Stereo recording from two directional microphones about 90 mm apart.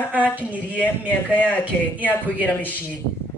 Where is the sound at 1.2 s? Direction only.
15° left (ahead or behind).